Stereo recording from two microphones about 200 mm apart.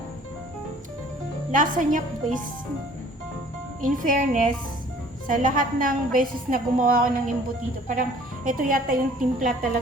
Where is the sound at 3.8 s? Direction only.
40° right (ahead or behind).